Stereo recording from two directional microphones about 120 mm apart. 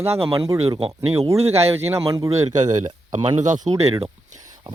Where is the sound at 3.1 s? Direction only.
90° right.